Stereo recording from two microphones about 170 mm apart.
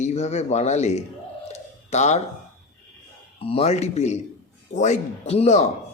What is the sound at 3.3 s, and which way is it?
Speech, 35° left (ahead or behind).